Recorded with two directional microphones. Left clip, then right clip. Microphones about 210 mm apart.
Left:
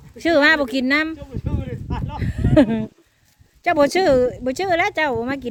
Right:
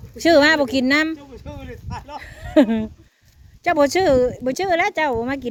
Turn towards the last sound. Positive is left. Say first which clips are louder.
# even
turn(degrees=-5)  # may be behind; listen again after turning